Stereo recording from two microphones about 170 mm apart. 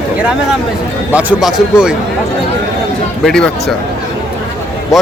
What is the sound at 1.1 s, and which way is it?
Speech, 10° right (ahead or behind).